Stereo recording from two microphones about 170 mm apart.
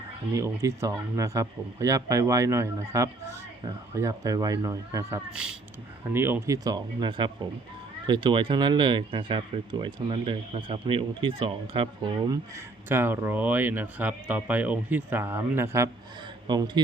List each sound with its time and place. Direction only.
0.3 s speech: 15° right (ahead or behind)
5.3 s speech: 5° right (ahead or behind)
16.5 s speech: 25° right (ahead or behind)